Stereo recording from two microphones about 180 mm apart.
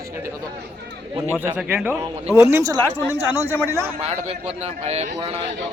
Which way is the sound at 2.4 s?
15° right (ahead or behind).